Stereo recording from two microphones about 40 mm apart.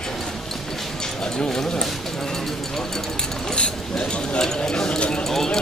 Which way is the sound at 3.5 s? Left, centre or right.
Left.